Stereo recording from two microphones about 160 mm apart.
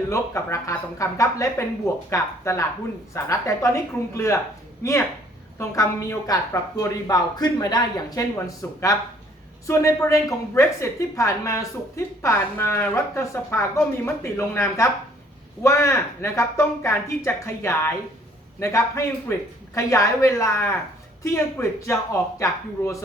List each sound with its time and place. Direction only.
0.1 s a woman's voice: 15° left (ahead or behind)